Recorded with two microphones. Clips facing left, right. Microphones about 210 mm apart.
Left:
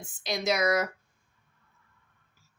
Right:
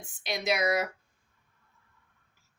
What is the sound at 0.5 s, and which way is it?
Speech, 15° right (ahead or behind).